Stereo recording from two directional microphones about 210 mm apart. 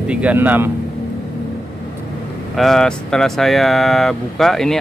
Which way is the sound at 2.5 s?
Centre (ahead or behind).